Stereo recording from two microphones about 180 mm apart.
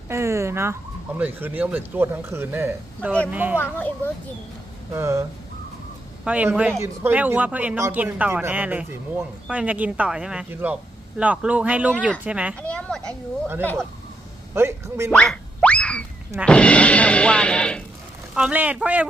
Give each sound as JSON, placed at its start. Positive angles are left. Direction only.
{"t": 0.1, "sound": "speech", "side_deg": -15}
{"t": 3.6, "sound": "a child's voice", "side_deg": 10}
{"t": 4.9, "sound": "speech", "side_deg": -15}
{"t": 6.2, "sound": "speech", "side_deg": -10}
{"t": 12.5, "sound": "speech", "side_deg": 5}
{"t": 14.5, "sound": "speech", "side_deg": -15}
{"t": 15.1, "sound": "boing", "side_deg": 5}
{"t": 16.5, "sound": "speech", "side_deg": 5}
{"t": 18.3, "sound": "speech", "side_deg": -5}